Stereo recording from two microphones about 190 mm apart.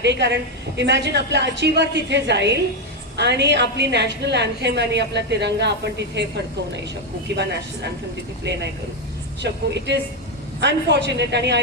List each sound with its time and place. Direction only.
0.0 s a woman's voice: 65° right (ahead or behind)